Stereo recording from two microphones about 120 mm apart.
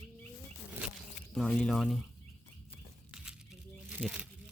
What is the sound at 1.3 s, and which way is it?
Speech, 5° left (ahead or behind).